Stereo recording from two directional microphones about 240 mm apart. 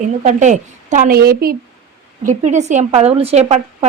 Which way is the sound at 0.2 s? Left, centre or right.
Right.